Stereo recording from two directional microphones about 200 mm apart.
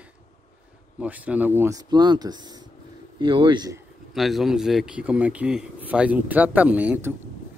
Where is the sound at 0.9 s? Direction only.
5° right (ahead or behind).